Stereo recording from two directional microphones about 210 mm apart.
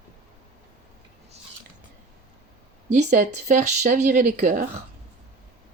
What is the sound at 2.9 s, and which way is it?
Speech, 35° right (ahead or behind).